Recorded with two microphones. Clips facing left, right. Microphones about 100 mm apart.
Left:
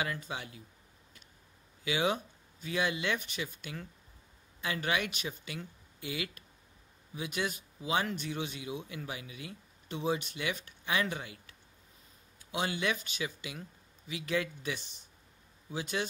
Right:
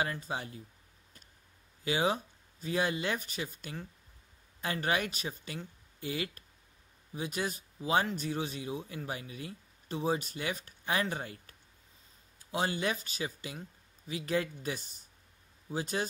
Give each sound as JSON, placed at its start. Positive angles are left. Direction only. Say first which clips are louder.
{"t": 0.0, "sound": "speech", "louder": "right 2 dB", "side_deg": -35}
{"t": 1.9, "sound": "speech", "louder": "right 1 dB", "side_deg": -35}